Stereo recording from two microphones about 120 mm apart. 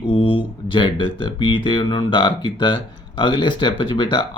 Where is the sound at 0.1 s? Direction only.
45° left (ahead or behind).